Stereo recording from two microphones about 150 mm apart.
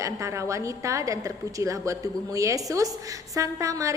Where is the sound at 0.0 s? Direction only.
20° right (ahead or behind).